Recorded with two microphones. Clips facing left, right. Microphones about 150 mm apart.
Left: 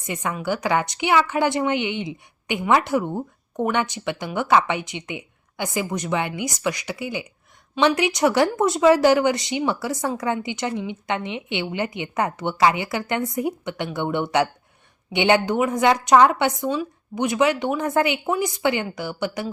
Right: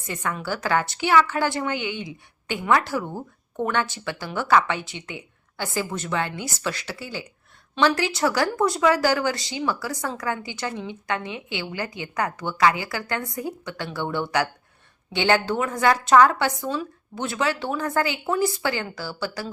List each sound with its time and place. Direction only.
0.0 s a woman's voice: 20° left (ahead or behind)